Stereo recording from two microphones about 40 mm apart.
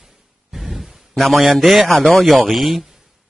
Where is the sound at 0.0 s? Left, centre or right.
Centre.